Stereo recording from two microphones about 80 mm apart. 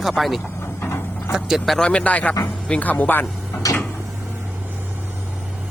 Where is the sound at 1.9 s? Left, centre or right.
Centre.